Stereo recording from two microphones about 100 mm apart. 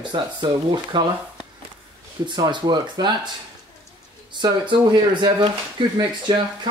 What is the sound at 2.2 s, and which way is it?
Speech, 50° right (ahead or behind).